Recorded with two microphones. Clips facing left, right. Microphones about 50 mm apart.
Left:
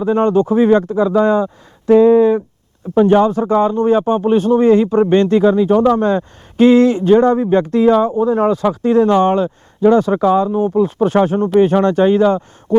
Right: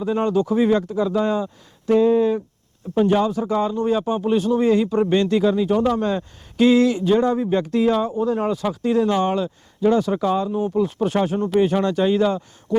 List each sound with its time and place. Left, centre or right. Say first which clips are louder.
0.0 s speech: left 7 dB; left